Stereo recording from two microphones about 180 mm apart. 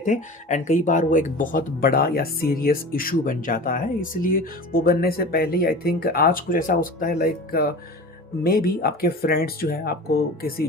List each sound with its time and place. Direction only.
0.0 s speech: 45° left (ahead or behind)